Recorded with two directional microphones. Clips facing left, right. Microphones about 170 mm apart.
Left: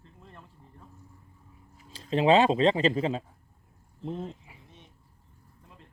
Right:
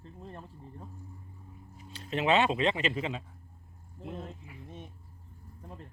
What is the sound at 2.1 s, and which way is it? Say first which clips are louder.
Speech: left 5 dB; 35° left (ahead or behind).